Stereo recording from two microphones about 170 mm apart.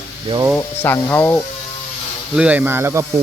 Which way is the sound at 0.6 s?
10° left (ahead or behind).